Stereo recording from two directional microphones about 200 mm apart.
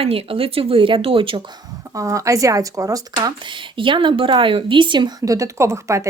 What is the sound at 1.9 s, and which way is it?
Speech, 15° right (ahead or behind).